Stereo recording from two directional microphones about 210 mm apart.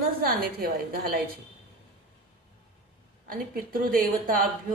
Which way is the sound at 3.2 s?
45° right (ahead or behind).